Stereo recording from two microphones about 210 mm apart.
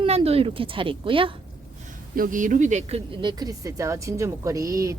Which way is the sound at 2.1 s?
40° right (ahead or behind).